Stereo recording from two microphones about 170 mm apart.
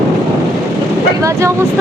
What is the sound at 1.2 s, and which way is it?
Speech, 15° right (ahead or behind).